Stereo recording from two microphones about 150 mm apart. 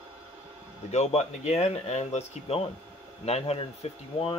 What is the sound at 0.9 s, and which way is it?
Speech, 50° left (ahead or behind).